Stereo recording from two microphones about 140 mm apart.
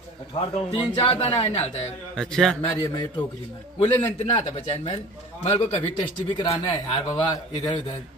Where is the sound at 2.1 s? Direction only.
5° left (ahead or behind).